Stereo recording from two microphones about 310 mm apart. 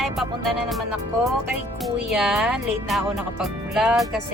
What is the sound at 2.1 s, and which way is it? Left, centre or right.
Speech, centre.